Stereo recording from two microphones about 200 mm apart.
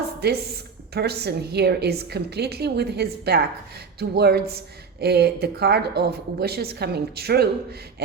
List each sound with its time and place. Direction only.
0.2 s a woman's voice: 55° right (ahead or behind)